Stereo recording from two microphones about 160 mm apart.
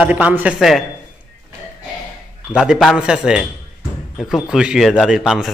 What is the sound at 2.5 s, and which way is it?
A man's voice, 5° right (ahead or behind).